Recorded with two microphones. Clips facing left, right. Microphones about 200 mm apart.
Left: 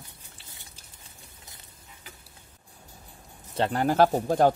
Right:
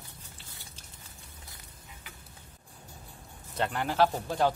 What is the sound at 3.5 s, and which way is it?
Speech, 35° left (ahead or behind).